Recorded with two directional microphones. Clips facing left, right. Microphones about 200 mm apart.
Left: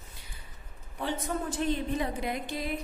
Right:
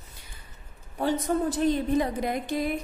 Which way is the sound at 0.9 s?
40° right (ahead or behind).